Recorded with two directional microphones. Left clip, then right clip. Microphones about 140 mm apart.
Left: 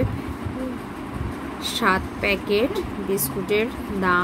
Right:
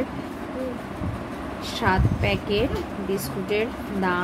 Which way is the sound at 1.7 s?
35° left (ahead or behind).